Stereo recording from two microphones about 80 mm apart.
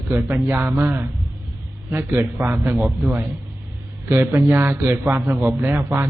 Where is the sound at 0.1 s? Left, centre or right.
Right.